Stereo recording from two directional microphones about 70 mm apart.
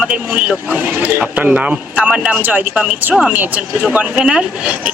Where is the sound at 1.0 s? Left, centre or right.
Centre.